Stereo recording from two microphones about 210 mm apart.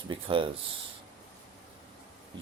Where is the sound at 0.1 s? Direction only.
25° right (ahead or behind).